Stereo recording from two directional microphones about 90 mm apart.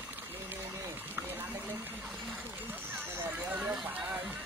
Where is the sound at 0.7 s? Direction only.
25° right (ahead or behind).